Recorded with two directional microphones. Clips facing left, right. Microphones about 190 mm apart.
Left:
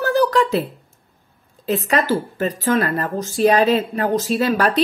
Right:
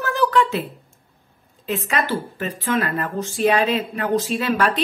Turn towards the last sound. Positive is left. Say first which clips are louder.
# left 3 dB
turn(degrees=40)  # may be behind; listen again after turning